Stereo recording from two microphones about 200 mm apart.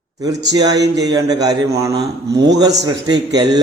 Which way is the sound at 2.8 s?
20° right (ahead or behind).